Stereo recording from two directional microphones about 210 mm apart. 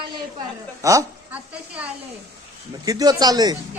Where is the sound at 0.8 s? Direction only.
15° right (ahead or behind).